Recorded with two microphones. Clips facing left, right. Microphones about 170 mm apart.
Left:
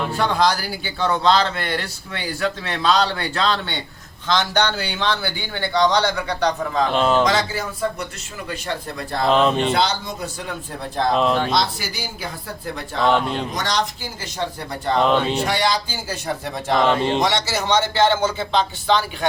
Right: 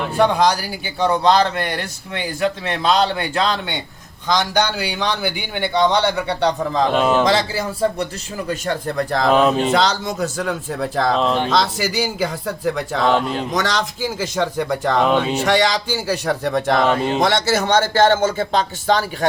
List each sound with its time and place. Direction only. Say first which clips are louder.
0.2 s a man's voice: right 5 dB; 15° right (ahead or behind)
6.9 s a man's voice: even; 5° right (ahead or behind)
7.3 s a man's voice: right 3 dB; 30° right (ahead or behind)
8.4 s speech: right 5 dB; 50° right (ahead or behind); by 9.3 s 70° right (ahead or behind)
9.3 s speech: right 1 dB; 5° right (ahead or behind)
9.7 s speech: right 4 dB; 90° right
11.1 s speech: left 2 dB; 5° left (ahead or behind)
11.5 s speech: right 4 dB; 90° right
15.0 s speech: right 1 dB; 5° right (ahead or behind)
15.4 s a man's voice: right 4 dB; 90° right
17.2 s speech: right 4 dB; 55° right (ahead or behind)